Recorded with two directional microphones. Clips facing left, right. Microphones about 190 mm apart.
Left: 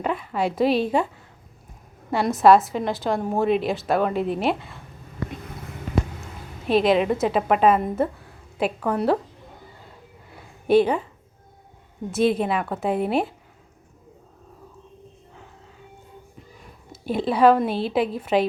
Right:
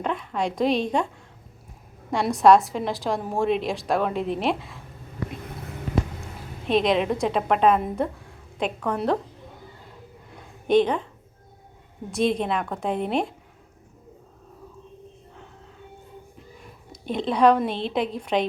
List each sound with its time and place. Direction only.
0.0 s a woman's voice: 5° left (ahead or behind)
6.7 s a woman's voice: 5° left (ahead or behind)
10.3 s a sound: 5° left (ahead or behind)
12.1 s a woman's voice: 5° left (ahead or behind)
16.9 s a woman's voice: 5° left (ahead or behind)